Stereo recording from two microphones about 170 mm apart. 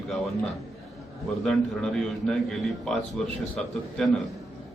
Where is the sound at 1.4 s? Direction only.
5° left (ahead or behind).